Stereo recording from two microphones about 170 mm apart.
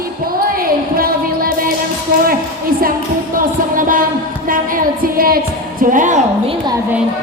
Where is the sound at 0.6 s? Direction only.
60° right (ahead or behind).